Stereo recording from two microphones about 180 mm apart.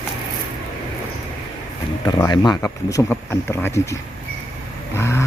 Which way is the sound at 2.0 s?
25° left (ahead or behind).